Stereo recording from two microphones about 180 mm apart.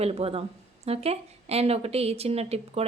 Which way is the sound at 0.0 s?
35° right (ahead or behind).